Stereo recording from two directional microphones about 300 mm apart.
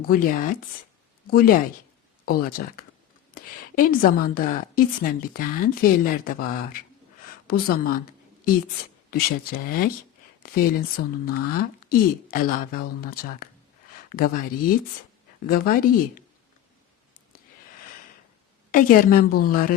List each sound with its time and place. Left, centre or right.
0.0 s a woman's voice: left
9.0 s a woman's voice: left
18.7 s a woman's voice: left